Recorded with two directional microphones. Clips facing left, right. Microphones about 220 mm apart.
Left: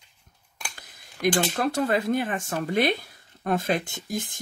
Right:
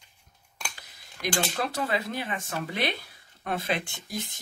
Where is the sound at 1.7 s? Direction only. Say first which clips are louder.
Left 7 dB; 45° left (ahead or behind).